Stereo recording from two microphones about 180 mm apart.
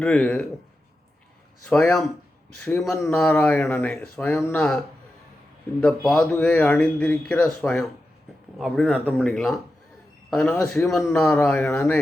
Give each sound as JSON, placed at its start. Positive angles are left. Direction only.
{"t": 0.0, "sound": "speech", "side_deg": 5}
{"t": 1.7, "sound": "speech", "side_deg": 5}
{"t": 5.8, "sound": "speech", "side_deg": 0}